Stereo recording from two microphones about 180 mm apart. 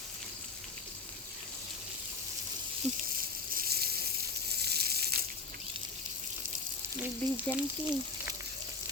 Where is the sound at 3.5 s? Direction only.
60° right (ahead or behind).